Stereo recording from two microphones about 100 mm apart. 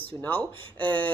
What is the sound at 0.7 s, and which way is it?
Speech, 55° right (ahead or behind).